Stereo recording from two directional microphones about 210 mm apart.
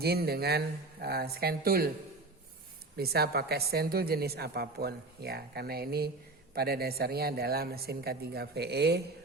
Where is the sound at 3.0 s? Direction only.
50° right (ahead or behind).